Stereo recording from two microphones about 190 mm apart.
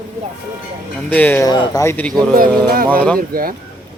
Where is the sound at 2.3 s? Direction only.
50° right (ahead or behind).